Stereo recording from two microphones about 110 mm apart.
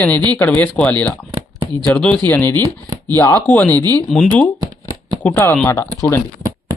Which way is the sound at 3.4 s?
15° left (ahead or behind).